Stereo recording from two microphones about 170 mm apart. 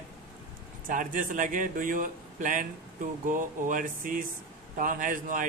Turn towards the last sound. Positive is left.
turn(degrees=-50)  # may be behind; listen again after turning